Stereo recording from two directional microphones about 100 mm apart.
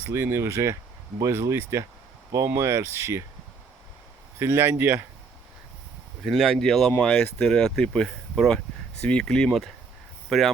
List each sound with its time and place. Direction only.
0.0 s speech: 25° right (ahead or behind)
4.4 s speech: 25° right (ahead or behind)
6.2 s speech: centre (ahead or behind)